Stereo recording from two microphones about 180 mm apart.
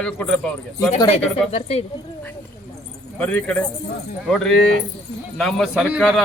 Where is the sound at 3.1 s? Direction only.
5° left (ahead or behind).